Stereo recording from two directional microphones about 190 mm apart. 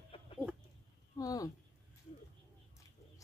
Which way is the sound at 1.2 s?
20° left (ahead or behind).